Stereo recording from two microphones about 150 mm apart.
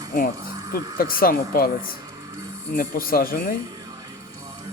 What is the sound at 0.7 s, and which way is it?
Speech, 75° left (ahead or behind).